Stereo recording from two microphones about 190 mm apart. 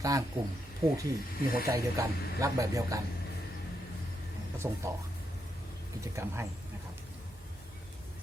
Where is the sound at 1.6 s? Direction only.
15° right (ahead or behind).